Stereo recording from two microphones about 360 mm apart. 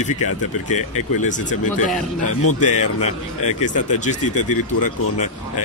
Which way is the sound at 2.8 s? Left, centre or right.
Left.